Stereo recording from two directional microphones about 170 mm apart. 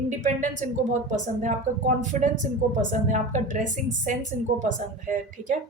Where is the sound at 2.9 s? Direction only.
45° right (ahead or behind).